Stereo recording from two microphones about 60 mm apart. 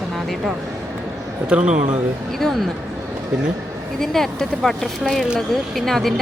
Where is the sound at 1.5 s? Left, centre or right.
Centre.